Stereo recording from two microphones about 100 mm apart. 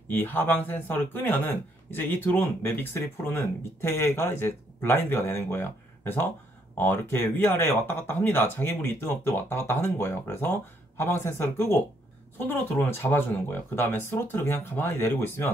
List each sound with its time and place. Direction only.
0.1 s speech: 20° left (ahead or behind)